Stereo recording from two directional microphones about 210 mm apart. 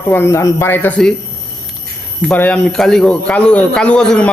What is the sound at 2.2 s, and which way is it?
A man's voice, 5° left (ahead or behind).